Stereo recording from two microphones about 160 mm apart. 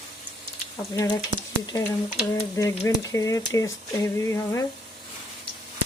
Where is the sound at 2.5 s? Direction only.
20° left (ahead or behind).